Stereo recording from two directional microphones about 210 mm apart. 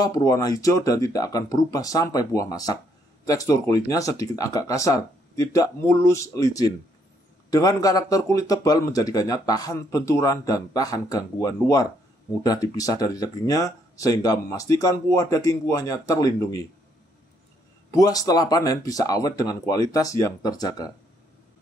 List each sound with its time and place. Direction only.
0.0 s speech: 15° left (ahead or behind)
17.9 s speech: 15° left (ahead or behind)